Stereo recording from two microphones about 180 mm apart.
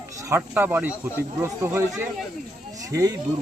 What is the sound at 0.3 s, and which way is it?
Speech, 10° right (ahead or behind).